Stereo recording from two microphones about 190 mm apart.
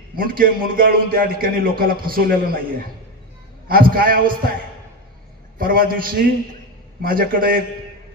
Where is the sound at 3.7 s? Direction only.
50° right (ahead or behind).